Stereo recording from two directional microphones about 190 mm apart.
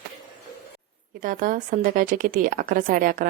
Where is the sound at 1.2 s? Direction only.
45° right (ahead or behind).